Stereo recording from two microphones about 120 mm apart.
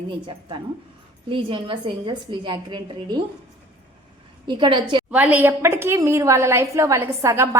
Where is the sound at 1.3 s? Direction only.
45° right (ahead or behind).